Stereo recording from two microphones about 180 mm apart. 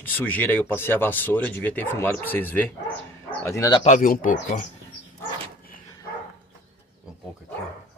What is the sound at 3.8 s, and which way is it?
Speech, 45° left (ahead or behind).